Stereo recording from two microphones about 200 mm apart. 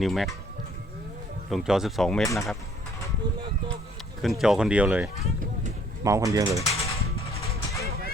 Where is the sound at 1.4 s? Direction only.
Centre (ahead or behind).